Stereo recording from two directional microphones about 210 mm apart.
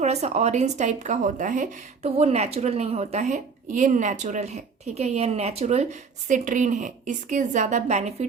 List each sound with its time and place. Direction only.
0.0 s a woman's voice: 30° right (ahead or behind)